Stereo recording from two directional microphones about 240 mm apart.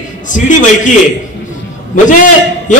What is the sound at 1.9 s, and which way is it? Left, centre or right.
Speech, left.